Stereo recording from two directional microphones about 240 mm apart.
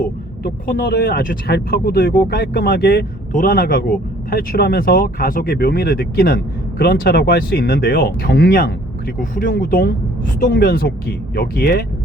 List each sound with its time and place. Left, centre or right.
0.0 s speech: left